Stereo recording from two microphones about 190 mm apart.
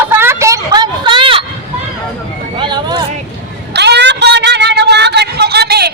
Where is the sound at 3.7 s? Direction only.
60° right (ahead or behind).